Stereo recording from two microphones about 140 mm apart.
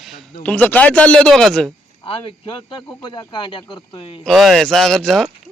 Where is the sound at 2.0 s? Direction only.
40° left (ahead or behind).